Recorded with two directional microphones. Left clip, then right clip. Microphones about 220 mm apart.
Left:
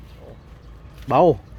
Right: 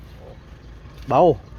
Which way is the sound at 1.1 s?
15° left (ahead or behind).